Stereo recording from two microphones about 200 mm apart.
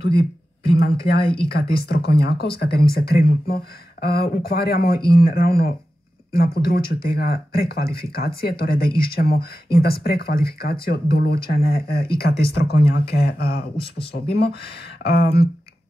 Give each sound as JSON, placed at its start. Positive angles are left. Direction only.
{"t": 0.7, "sound": "speech", "side_deg": 50}
{"t": 1.2, "sound": "speech", "side_deg": 25}
{"t": 1.9, "sound": "speech", "side_deg": 55}
{"t": 13.7, "sound": "speech", "side_deg": 25}
{"t": 14.1, "sound": "speech", "side_deg": 55}